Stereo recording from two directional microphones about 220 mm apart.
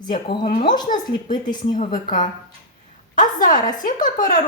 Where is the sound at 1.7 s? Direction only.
35° left (ahead or behind).